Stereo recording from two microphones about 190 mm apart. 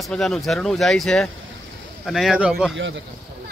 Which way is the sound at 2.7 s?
75° right (ahead or behind).